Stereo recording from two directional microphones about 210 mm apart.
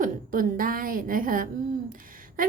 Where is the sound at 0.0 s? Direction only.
40° right (ahead or behind).